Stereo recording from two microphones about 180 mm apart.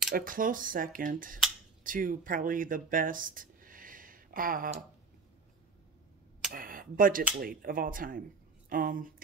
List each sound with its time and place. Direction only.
0.1 s speech: 50° right (ahead or behind)
6.5 s speech: 50° right (ahead or behind)